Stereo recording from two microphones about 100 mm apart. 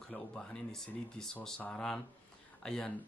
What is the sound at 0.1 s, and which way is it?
Speech, 5° left (ahead or behind).